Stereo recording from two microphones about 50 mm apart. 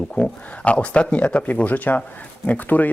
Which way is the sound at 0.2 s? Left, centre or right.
Left.